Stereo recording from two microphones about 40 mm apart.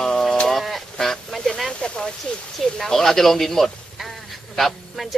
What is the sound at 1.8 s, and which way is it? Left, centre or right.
Speech, left.